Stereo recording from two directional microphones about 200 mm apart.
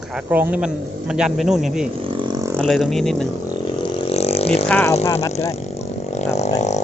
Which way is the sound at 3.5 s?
25° left (ahead or behind).